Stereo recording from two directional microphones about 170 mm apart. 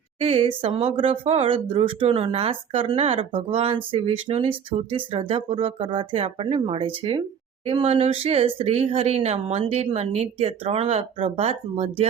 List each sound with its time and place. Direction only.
0.2 s speech: 35° right (ahead or behind)